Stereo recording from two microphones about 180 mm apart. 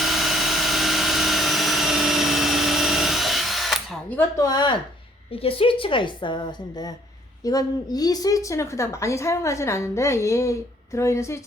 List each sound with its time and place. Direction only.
0.0 s vehicle: centre (ahead or behind)
4.2 s a woman's voice: 20° left (ahead or behind)